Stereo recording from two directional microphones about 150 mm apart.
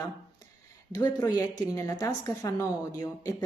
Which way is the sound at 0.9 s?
25° left (ahead or behind).